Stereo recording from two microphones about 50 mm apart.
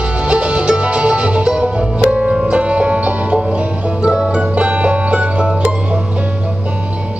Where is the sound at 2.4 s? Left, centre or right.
Right.